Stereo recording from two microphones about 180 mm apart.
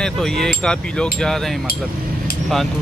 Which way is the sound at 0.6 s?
5° left (ahead or behind).